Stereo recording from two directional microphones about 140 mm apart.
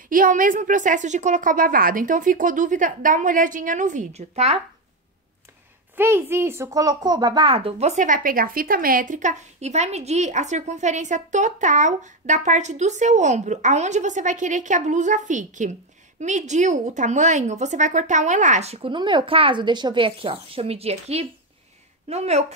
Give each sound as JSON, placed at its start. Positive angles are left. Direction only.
{"t": 0.1, "sound": "a woman's voice", "side_deg": -75}
{"t": 5.9, "sound": "a woman's voice", "side_deg": -15}